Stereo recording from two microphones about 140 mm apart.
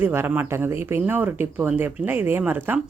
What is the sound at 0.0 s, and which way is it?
Speech, 15° right (ahead or behind).